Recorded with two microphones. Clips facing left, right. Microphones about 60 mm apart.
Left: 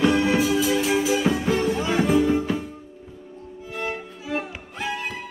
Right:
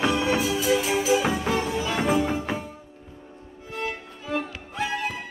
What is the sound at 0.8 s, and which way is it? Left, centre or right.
Music, centre.